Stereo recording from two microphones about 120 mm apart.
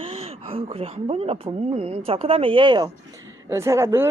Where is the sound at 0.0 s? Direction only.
55° right (ahead or behind).